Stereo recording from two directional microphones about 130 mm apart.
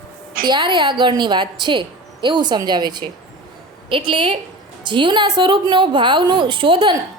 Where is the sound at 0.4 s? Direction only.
35° right (ahead or behind).